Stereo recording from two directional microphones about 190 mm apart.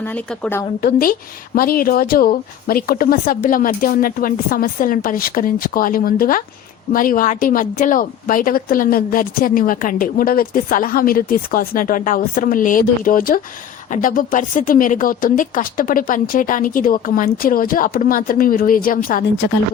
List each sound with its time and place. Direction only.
0.0 s speech: 10° left (ahead or behind)
0.8 s speech: 55° left (ahead or behind)
19.4 s speech: 65° left (ahead or behind)